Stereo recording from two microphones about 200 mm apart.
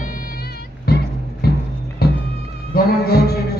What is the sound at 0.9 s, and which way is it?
Music, 50° left (ahead or behind).